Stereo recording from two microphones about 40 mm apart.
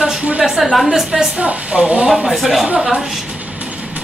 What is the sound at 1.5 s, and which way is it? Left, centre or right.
Speech, right.